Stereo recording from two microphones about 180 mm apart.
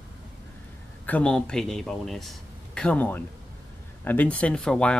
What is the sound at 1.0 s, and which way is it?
A man's voice, 5° left (ahead or behind).